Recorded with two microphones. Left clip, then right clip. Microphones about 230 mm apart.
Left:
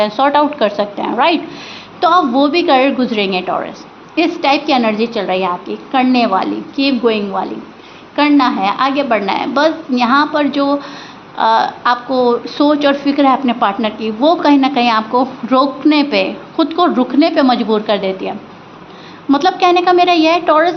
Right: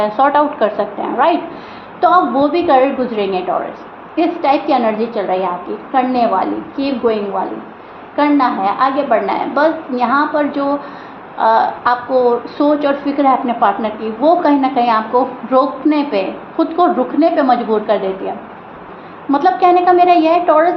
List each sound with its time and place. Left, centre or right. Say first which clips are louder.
0.0 s a woman's voice: even; left
19.3 s a woman's voice: even; left